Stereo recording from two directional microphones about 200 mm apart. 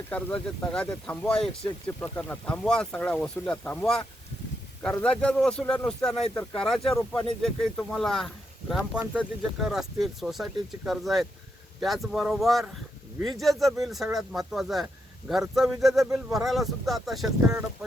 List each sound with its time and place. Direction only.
0.1 s speech: 5° left (ahead or behind)